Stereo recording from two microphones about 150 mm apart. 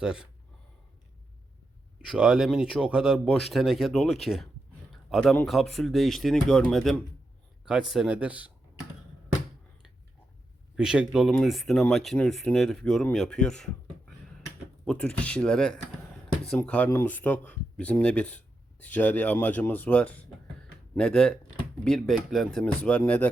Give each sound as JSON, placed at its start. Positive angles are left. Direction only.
{"t": 0.0, "sound": "speech", "side_deg": -5}
{"t": 2.0, "sound": "speech", "side_deg": -5}
{"t": 10.8, "sound": "speech", "side_deg": -5}